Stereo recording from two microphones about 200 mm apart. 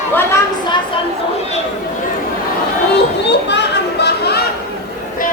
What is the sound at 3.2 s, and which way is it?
Children playing, 60° left (ahead or behind).